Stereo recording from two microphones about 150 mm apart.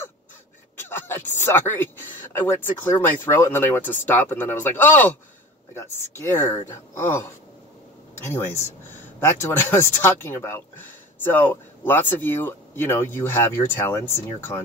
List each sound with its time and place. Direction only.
0.8 s a sound: 15° left (ahead or behind)
2.3 s speech: 15° left (ahead or behind)
6.1 s speech: 15° left (ahead or behind)
9.2 s speech: 15° left (ahead or behind)